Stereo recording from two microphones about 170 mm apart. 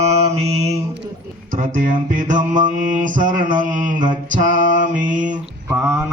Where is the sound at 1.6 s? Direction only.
50° right (ahead or behind).